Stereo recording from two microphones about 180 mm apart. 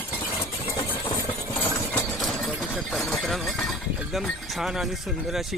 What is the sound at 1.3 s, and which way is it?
Engine, 15° left (ahead or behind).